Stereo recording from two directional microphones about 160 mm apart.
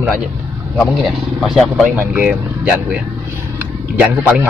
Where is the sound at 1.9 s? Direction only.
10° right (ahead or behind).